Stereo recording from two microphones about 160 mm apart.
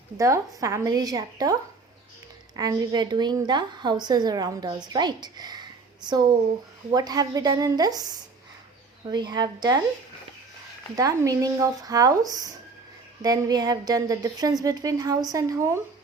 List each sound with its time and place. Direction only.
0.2 s a woman's voice: 20° right (ahead or behind)
2.6 s a woman's voice: 25° right (ahead or behind)
10.9 s a woman's voice: 20° right (ahead or behind)